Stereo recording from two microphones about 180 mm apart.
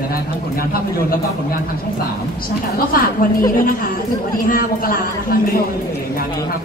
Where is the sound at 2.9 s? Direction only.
55° left (ahead or behind).